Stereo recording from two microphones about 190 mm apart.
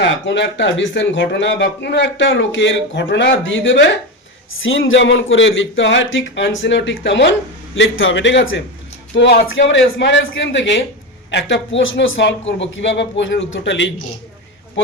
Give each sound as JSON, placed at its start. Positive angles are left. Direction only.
{"t": 0.0, "sound": "speech", "side_deg": 65}
{"t": 4.9, "sound": "speech", "side_deg": 80}
{"t": 7.8, "sound": "speech", "side_deg": 85}